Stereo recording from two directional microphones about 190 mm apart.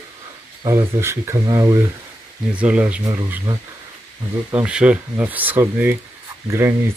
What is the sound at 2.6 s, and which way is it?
Speech, 5° right (ahead or behind).